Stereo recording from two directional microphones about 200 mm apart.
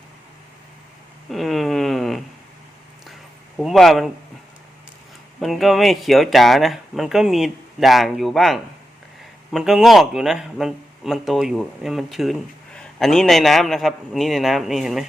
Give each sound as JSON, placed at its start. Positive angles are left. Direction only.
{"t": 1.3, "sound": "a sound", "side_deg": 0}
{"t": 3.6, "sound": "a man's voice", "side_deg": 0}
{"t": 5.4, "sound": "a man's voice", "side_deg": 0}